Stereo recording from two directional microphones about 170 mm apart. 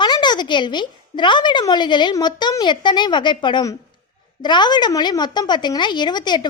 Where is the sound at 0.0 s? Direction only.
25° left (ahead or behind).